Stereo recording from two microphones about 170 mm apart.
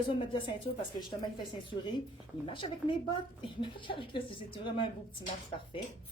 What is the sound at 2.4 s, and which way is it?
A woman's voice, 30° left (ahead or behind).